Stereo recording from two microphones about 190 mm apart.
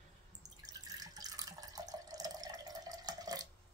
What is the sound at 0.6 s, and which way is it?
Water tap, 20° right (ahead or behind).